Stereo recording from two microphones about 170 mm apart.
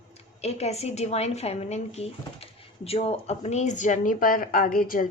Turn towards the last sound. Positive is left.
turn(degrees=55)  # may be behind; listen again after turning